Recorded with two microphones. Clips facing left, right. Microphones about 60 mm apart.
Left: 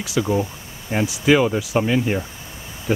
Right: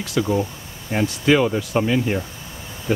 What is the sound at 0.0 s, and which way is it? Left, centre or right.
Speech, centre.